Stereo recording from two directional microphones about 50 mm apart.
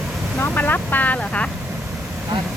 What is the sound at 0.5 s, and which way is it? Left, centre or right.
Speech, left.